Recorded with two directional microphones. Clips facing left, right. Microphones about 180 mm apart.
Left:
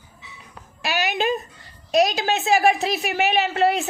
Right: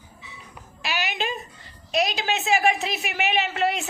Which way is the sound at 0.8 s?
45° left (ahead or behind).